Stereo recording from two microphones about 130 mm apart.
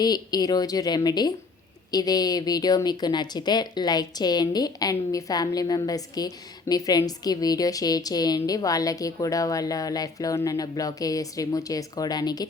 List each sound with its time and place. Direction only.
0.0 s a woman's voice: 30° left (ahead or behind)